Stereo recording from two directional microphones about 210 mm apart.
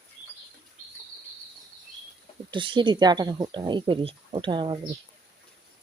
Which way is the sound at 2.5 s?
25° right (ahead or behind).